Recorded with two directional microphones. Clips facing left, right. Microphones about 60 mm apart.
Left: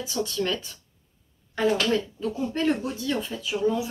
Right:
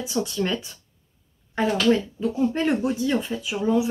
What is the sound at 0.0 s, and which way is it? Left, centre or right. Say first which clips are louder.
Speech: right 2 dB; centre.